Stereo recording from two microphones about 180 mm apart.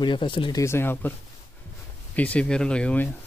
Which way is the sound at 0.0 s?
25° left (ahead or behind).